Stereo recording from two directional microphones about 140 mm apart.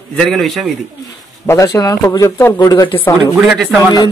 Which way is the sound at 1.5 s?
20° left (ahead or behind).